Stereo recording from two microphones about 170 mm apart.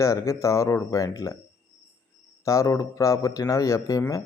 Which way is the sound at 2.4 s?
20° left (ahead or behind).